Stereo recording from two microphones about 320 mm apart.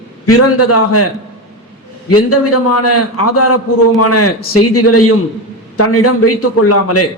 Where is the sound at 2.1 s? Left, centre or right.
Left.